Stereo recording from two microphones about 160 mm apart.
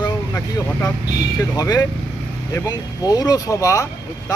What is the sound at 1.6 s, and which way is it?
Speech, 25° left (ahead or behind).